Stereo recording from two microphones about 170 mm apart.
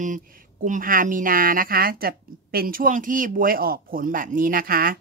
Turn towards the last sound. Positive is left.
turn(degrees=-60)  # may be behind; listen again after turning